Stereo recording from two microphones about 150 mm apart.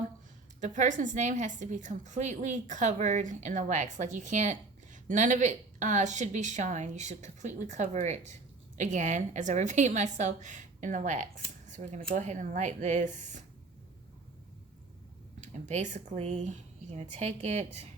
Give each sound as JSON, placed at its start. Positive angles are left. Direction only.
{"t": 0.6, "sound": "a woman's voice", "side_deg": -55}
{"t": 15.4, "sound": "speech", "side_deg": -55}